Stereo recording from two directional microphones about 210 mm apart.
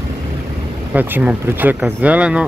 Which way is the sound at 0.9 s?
5° right (ahead or behind).